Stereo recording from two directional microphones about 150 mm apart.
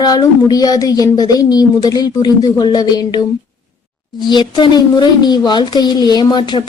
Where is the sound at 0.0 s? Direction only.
25° left (ahead or behind).